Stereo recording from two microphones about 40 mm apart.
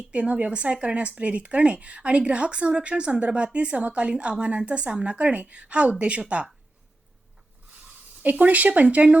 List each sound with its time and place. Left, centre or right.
0.1 s a woman's voice: right
8.2 s speech: right